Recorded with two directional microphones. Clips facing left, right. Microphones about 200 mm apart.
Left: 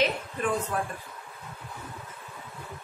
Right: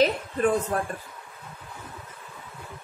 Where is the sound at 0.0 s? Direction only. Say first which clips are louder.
Right 5 dB; 40° right (ahead or behind).